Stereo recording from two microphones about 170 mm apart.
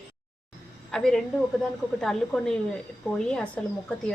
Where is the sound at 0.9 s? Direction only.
5° left (ahead or behind).